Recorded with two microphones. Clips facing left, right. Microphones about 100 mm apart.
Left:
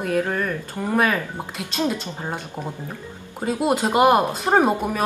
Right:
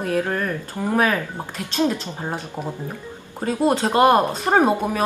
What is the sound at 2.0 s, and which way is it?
Speech, 15° right (ahead or behind).